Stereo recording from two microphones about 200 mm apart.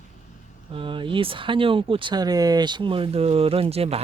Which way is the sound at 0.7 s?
25° right (ahead or behind).